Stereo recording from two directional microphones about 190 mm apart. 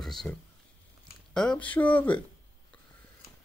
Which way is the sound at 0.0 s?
Centre (ahead or behind).